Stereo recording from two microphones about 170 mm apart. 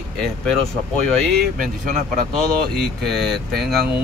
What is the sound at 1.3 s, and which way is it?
Speech, 55° right (ahead or behind).